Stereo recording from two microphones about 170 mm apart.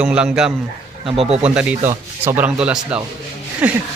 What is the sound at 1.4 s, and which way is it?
A man's voice, 5° right (ahead or behind).